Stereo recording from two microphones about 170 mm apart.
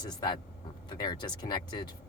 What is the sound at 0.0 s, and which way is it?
Speech, 25° left (ahead or behind).